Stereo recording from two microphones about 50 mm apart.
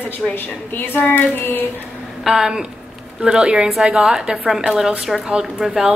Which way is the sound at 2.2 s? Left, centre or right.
Centre.